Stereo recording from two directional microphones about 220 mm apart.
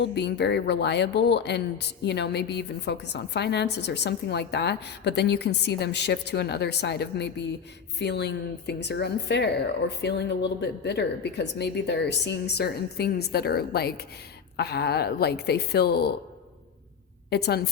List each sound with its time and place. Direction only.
0.1 s speech: 50° left (ahead or behind)
17.2 s a woman's voice: 45° left (ahead or behind)